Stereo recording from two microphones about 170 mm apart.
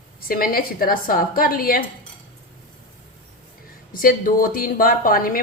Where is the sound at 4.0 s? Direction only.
55° left (ahead or behind).